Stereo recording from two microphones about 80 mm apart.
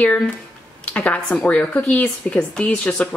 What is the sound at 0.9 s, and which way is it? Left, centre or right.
A woman's voice, centre.